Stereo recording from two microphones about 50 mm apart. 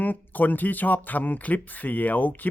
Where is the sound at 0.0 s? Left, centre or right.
Left.